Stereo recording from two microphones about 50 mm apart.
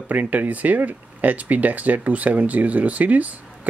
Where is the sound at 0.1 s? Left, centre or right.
Right.